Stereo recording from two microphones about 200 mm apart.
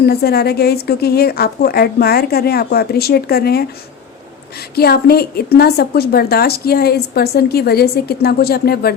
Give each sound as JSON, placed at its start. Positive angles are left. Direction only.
{"t": 0.0, "sound": "a woman's voice", "side_deg": 50}
{"t": 4.7, "sound": "a woman's voice", "side_deg": 50}